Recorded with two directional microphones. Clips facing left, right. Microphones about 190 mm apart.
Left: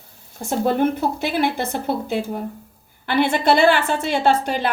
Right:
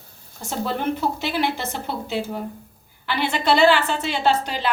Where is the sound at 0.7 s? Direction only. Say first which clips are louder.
Left 5 dB; 50° left (ahead or behind).